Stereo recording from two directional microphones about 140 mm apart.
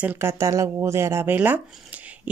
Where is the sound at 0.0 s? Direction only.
15° right (ahead or behind).